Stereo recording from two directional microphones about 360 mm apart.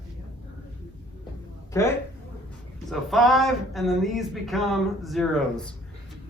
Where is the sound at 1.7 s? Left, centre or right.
Centre.